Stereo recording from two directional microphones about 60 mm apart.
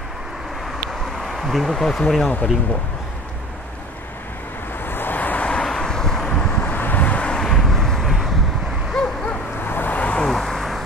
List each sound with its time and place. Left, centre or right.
1.2 s speech: centre
2.2 s speech: left
4.8 s vehicle: left
5.5 s vehicle: centre
6.7 s vehicle: left; by 8.1 s centre
9.0 s a sound: centre
9.6 s vehicle: left
10.2 s vehicle: centre